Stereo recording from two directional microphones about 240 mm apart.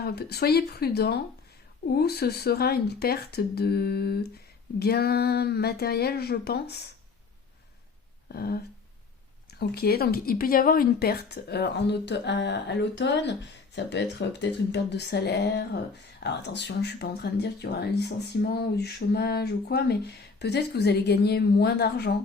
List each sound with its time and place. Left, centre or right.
0.0 s speech: left
8.3 s speech: left